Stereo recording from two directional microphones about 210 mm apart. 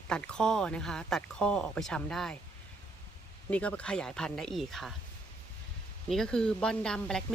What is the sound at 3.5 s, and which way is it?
Speech, 5° left (ahead or behind).